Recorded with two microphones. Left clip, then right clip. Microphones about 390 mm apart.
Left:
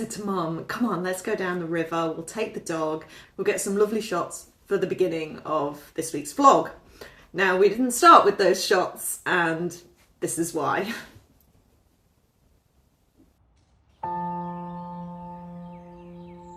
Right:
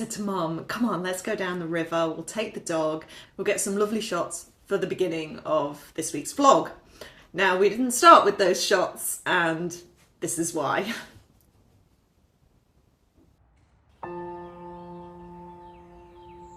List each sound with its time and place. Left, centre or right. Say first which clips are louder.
0.1 s speech: right 1 dB; left